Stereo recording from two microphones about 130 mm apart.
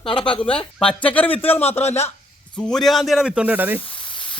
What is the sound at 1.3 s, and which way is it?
Speech, 45° left (ahead or behind).